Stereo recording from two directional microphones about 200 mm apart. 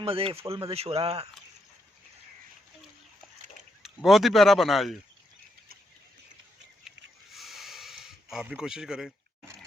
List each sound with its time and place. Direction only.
0.0 s speech: 30° right (ahead or behind)
3.8 s speech: centre (ahead or behind)
6.8 s a sound: centre (ahead or behind)